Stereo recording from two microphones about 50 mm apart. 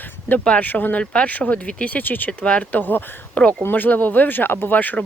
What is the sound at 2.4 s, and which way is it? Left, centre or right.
Speech, left.